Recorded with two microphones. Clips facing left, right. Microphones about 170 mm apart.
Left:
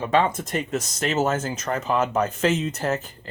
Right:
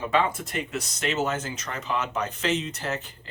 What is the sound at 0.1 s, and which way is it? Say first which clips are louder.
Speech: left 4 dB; 40° left (ahead or behind).